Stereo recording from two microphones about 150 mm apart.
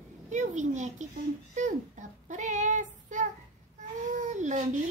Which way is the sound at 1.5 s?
55° right (ahead or behind).